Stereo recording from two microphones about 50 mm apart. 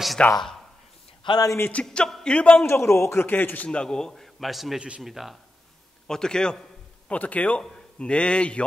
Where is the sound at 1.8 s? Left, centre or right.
Left.